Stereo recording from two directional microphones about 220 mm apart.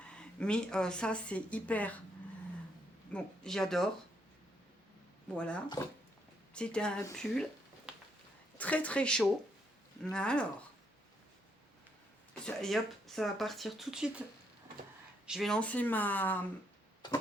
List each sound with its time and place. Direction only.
0.0 s speech: 5° left (ahead or behind)
3.1 s speech: 5° left (ahead or behind)
5.3 s speech: 5° left (ahead or behind)
7.9 s a sound: 5° right (ahead or behind)
8.5 s speech: 5° left (ahead or behind)
12.5 s speech: centre (ahead or behind)
15.3 s speech: centre (ahead or behind)
17.0 s tick-tock: 20° left (ahead or behind)